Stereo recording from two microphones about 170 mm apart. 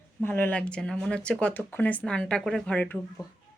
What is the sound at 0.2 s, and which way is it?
Speech, 10° left (ahead or behind).